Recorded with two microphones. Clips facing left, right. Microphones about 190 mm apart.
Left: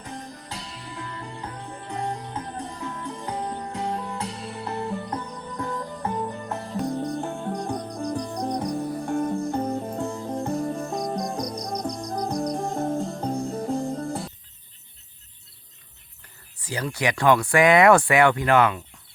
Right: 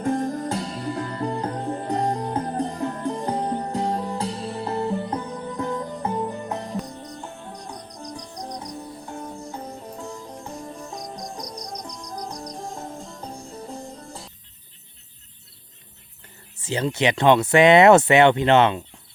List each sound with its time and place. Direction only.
0.0 s music: 50° right (ahead or behind); by 6.7 s 20° right (ahead or behind)
6.8 s cricket: 60° left (ahead or behind)
16.6 s speech: 25° right (ahead or behind)